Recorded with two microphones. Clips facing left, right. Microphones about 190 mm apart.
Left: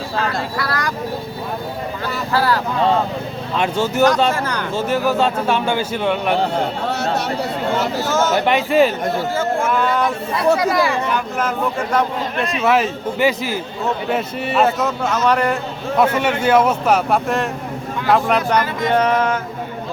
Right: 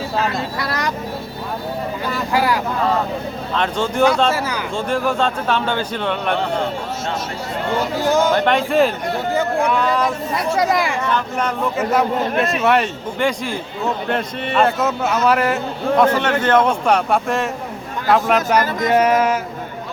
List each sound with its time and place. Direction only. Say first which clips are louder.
0.6 s speech: right 1 dB; 20° right (ahead or behind)
2.3 s speech: even; 15° right (ahead or behind)
3.5 s speech: left 2 dB; 10° left (ahead or behind)
4.3 s speech: even; 5° right (ahead or behind)
4.7 s speech: left 2 dB; 5° left (ahead or behind)
8.0 s speech: right 5 dB; 15° right (ahead or behind)
8.3 s a man's voice: even; 5° left (ahead or behind)
9.3 s speech: right 1 dB; 15° right (ahead or behind)
9.6 s a man's voice: even; centre (ahead or behind)
10.6 s speech: even; 20° right (ahead or behind)
11.3 s a man's voice: even; centre (ahead or behind)
16.0 s a man's voice: even; 10° left (ahead or behind); by 19.4 s 10° right (ahead or behind)